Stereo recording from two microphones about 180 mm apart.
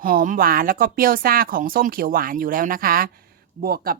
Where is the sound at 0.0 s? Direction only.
50° right (ahead or behind).